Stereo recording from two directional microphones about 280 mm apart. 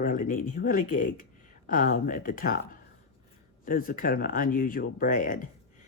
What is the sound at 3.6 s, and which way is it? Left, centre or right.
Speech, left.